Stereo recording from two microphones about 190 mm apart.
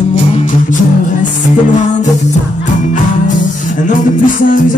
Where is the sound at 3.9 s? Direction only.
45° left (ahead or behind).